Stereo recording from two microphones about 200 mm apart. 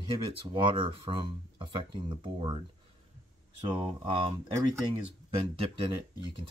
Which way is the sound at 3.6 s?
25° right (ahead or behind).